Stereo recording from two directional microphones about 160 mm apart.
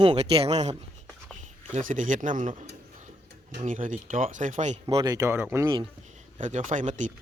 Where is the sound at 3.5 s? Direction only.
50° right (ahead or behind).